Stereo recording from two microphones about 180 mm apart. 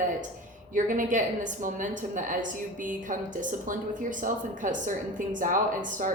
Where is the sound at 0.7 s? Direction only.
45° right (ahead or behind).